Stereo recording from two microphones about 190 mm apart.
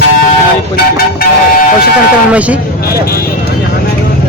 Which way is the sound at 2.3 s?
5° right (ahead or behind).